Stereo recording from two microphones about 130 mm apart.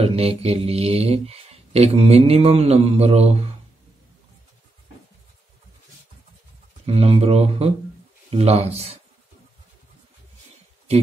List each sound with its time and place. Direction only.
0.0 s speech: 50° right (ahead or behind)
6.9 s speech: 50° right (ahead or behind)